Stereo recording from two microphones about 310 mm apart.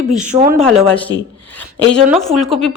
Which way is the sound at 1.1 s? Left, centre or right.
Centre.